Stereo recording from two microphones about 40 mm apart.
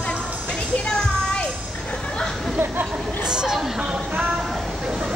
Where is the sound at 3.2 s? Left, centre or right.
Centre.